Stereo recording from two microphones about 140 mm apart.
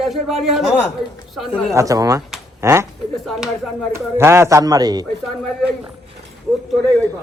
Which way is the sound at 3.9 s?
20° right (ahead or behind).